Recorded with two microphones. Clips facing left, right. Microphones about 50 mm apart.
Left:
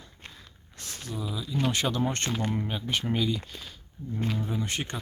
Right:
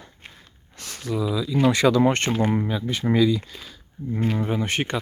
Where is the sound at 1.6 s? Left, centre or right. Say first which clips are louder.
Right 10 dB; right.